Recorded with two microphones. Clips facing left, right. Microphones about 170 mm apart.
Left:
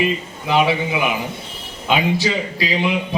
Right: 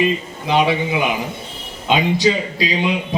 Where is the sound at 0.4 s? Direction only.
20° right (ahead or behind).